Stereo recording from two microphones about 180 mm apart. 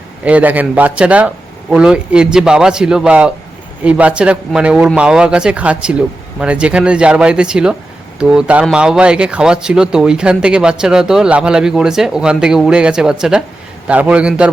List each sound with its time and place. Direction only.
0.3 s speech: 10° right (ahead or behind)